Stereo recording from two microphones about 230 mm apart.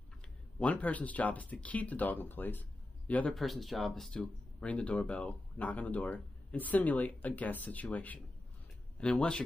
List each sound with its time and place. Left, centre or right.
0.6 s speech: centre